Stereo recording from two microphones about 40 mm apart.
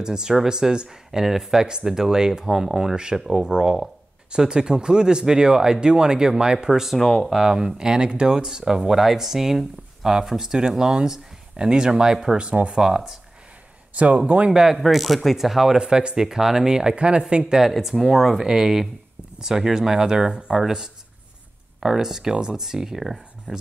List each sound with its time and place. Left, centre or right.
0.0 s speech: centre
6.7 s speech: centre
7.0 s speech: centre
7.3 s speech: centre
12.4 s speech: right
12.7 s speech: centre
13.9 s speech: right
14.5 s speech: centre
14.8 s speech: centre
15.8 s speech: right
16.2 s speech: centre
16.9 s speech: right
17.6 s speech: centre